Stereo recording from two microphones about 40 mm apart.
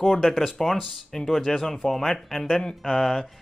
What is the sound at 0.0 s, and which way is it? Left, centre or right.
Speech, centre.